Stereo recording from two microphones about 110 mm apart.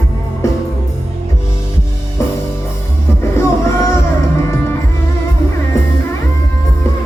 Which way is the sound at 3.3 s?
25° left (ahead or behind).